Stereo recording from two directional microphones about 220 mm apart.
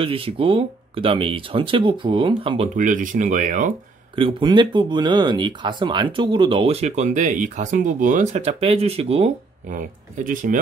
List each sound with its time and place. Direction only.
0.0 s speech: 25° right (ahead or behind)
2.7 s speech: 35° right (ahead or behind)
4.1 s speech: 25° right (ahead or behind)